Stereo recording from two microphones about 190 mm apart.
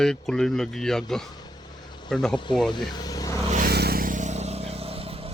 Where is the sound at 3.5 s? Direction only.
55° right (ahead or behind); by 5.2 s 30° right (ahead or behind).